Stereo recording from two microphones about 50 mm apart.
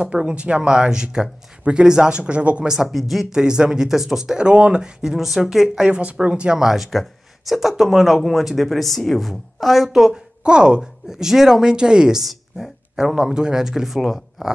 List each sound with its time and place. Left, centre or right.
0.0 s speech: right
2.7 s speech: centre
3.3 s speech: centre
5.9 s speech: right
6.7 s speech: centre